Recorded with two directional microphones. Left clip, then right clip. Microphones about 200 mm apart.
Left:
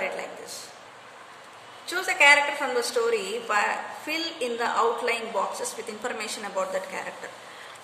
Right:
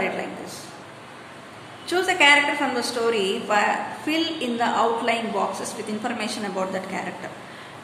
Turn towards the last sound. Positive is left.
turn(degrees=20)  # may be behind; listen again after turning